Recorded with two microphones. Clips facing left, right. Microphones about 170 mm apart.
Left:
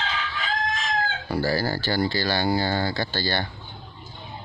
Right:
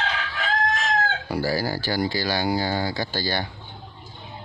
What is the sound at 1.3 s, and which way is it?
Speech, 10° right (ahead or behind).